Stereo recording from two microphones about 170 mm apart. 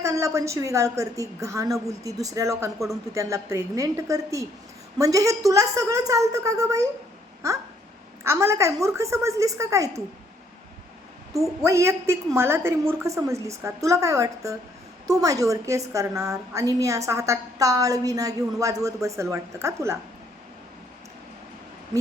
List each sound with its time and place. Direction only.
0.0 s a woman's voice: 20° right (ahead or behind)
2.7 s speech: centre (ahead or behind)
3.2 s a woman's voice: 20° right (ahead or behind)
8.2 s a woman's voice: 15° right (ahead or behind)
11.3 s a woman's voice: 15° right (ahead or behind)